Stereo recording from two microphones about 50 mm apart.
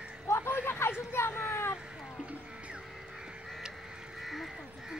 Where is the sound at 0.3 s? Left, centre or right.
Left.